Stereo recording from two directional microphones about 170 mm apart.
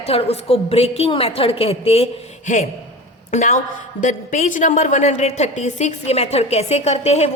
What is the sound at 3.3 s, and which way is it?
A woman's voice, 45° left (ahead or behind).